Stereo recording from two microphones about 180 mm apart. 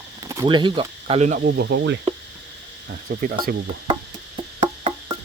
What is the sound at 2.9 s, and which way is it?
Insect, 55° right (ahead or behind).